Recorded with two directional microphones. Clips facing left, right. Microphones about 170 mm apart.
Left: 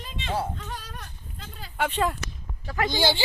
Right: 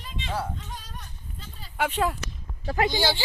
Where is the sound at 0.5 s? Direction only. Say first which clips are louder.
Left 3 dB; 65° left (ahead or behind).